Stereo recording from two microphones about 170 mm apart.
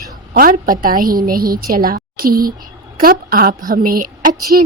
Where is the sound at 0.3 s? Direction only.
55° right (ahead or behind).